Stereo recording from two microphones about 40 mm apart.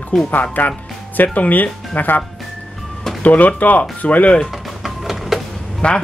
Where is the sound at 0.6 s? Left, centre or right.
Left.